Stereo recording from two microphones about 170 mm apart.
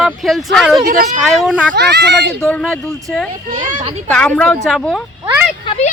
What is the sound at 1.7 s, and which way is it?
Speech, 85° right.